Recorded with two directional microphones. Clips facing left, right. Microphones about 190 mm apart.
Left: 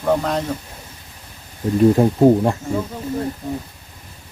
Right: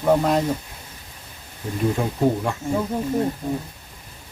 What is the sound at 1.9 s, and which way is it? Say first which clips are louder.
Speech: left 8 dB; 35° left (ahead or behind).